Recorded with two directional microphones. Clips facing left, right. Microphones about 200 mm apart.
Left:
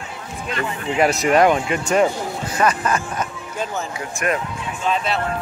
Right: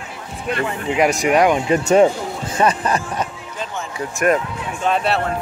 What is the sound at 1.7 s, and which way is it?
Speech, 35° right (ahead or behind).